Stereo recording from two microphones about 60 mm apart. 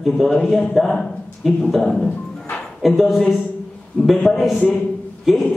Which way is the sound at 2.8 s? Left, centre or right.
Centre.